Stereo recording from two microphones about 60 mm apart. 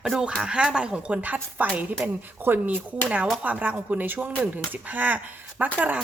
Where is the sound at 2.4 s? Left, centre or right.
Right.